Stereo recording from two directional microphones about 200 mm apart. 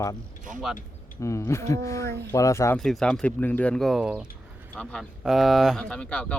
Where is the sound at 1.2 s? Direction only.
15° left (ahead or behind).